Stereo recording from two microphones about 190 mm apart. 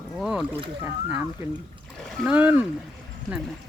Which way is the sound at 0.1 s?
Centre (ahead or behind).